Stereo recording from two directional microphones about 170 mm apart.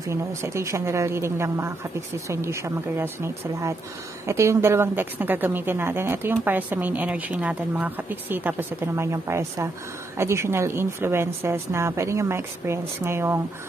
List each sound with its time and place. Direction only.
0.1 s a woman's voice: 15° right (ahead or behind)